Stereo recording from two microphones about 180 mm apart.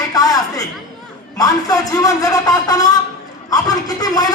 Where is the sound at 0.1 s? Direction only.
20° left (ahead or behind).